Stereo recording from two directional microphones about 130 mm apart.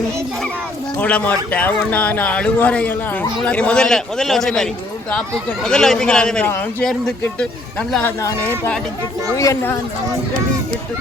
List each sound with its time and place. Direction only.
0.9 s a man's voice: 15° left (ahead or behind)
9.4 s speech: 25° left (ahead or behind)